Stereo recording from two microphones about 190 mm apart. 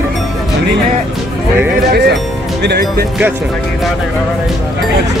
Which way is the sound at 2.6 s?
60° right (ahead or behind).